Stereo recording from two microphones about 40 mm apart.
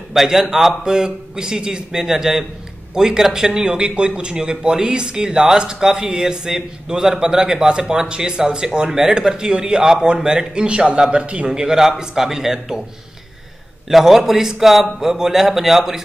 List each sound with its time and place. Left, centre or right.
0.1 s a man's voice: centre; by 11.4 s right
11.4 s a man's voice: centre
13.8 s a man's voice: centre